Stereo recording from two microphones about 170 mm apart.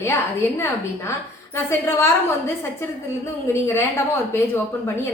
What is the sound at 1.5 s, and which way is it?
Speech, 15° left (ahead or behind).